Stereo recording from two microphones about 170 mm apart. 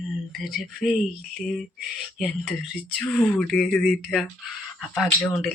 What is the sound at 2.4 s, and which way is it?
Speech, 5° left (ahead or behind).